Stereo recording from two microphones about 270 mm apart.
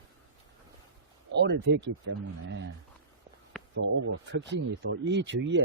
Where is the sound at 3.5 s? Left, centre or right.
Centre.